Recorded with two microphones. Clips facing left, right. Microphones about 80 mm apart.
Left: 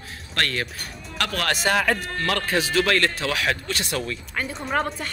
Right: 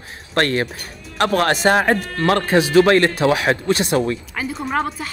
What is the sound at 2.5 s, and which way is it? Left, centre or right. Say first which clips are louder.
Speech: right 9 dB; right.